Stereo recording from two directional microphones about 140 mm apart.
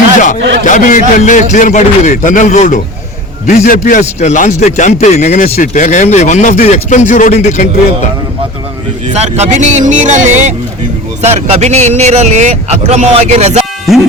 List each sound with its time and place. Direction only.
0.2 s speech: 65° left (ahead or behind)
3.4 s a man's voice: 90° left; by 7.7 s 55° left (ahead or behind)
9.1 s a man's voice: 50° right (ahead or behind)
13.9 s speech: centre (ahead or behind)